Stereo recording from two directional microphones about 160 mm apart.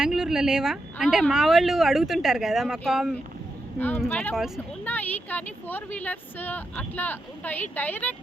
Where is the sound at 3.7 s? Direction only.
10° left (ahead or behind).